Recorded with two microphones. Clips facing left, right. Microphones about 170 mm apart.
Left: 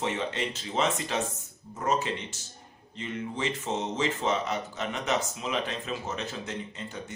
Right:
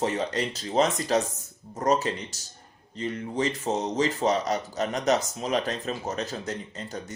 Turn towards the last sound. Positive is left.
turn(degrees=-40)  # may be behind; listen again after turning